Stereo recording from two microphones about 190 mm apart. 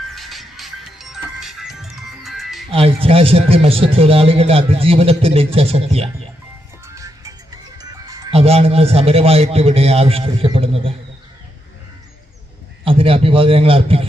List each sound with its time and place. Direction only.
0.1 s music: centre (ahead or behind)
2.6 s a man's voice: 30° right (ahead or behind)
6.8 s music: 15° right (ahead or behind)
8.3 s a man's voice: 30° right (ahead or behind)
12.8 s a man's voice: 30° right (ahead or behind)